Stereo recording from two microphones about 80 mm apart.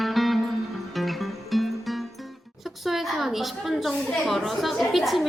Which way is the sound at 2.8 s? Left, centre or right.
Centre.